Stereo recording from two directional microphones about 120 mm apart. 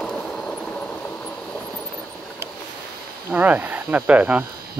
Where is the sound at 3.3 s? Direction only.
15° right (ahead or behind).